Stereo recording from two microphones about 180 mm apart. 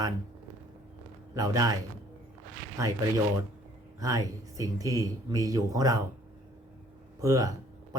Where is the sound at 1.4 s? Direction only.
20° right (ahead or behind).